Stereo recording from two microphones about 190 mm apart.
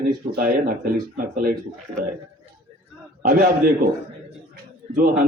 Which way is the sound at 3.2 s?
50° right (ahead or behind).